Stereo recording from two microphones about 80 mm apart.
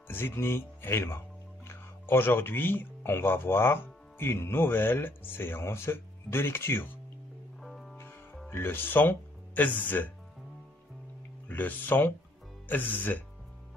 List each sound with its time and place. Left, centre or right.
0.1 s speech: left
7.6 s music: centre
8.5 s speech: left
11.4 s speech: left